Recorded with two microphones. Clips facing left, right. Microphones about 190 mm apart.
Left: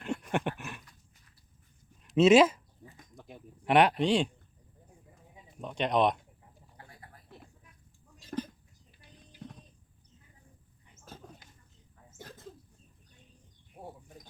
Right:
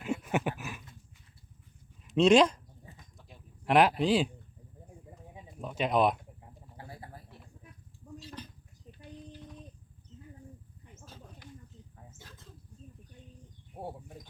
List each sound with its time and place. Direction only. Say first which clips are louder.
0.0 s dog: right 1 dB; 5° right (ahead or behind)
2.0 s speech: left 1 dB; 5° left (ahead or behind)
3.7 s speech: even; centre (ahead or behind)
5.5 s speech: even; 5° right (ahead or behind)
6.7 s a sound: right 8 dB; 30° right (ahead or behind)
8.2 s a sound: left 9 dB; 50° left (ahead or behind)